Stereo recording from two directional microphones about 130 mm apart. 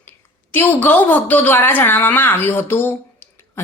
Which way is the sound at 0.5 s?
15° left (ahead or behind).